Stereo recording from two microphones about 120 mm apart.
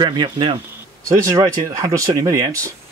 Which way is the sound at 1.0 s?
25° right (ahead or behind).